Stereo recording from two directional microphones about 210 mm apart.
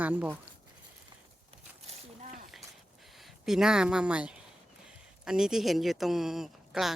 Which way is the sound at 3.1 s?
Centre (ahead or behind).